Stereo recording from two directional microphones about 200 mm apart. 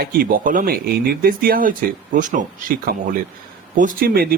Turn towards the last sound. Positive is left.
turn(degrees=-50)  # may be behind; listen again after turning